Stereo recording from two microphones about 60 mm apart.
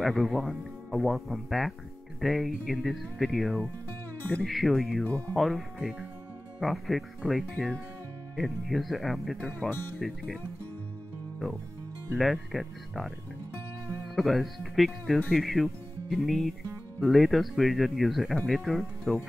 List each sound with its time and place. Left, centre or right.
0.0 s speech: centre
5.0 s speech: left
5.3 s speech: centre
9.6 s speech: centre
12.2 s speech: centre
14.1 s speech: centre
18.3 s speech: centre
18.6 s speech: centre